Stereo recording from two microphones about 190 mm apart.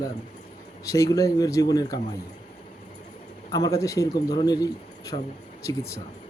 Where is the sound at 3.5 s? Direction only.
20° left (ahead or behind).